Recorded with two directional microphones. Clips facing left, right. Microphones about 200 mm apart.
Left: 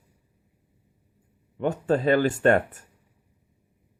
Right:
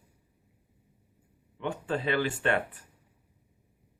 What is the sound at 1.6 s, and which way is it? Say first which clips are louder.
Speech: left 8 dB; 40° left (ahead or behind).